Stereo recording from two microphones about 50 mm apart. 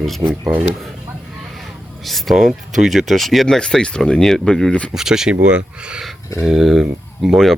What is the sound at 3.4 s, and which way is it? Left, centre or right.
Speech, centre.